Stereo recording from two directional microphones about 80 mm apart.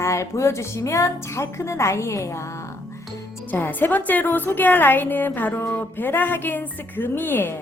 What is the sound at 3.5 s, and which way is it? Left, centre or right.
Speech, left.